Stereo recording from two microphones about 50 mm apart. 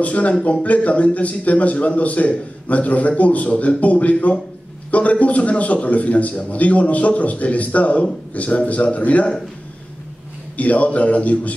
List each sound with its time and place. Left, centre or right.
0.0 s a man's voice: left
10.6 s a man's voice: left